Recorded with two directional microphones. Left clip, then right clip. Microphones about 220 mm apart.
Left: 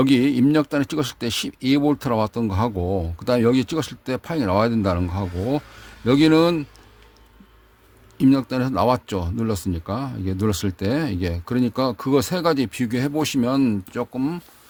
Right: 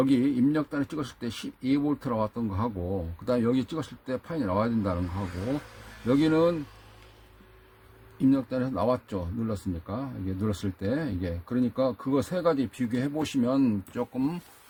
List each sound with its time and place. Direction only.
0.0 s speech: 50° left (ahead or behind)
6.1 s speech: 50° left (ahead or behind)
8.2 s speech: 45° left (ahead or behind)